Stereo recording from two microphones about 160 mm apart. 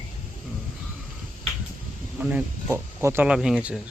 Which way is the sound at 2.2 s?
15° right (ahead or behind).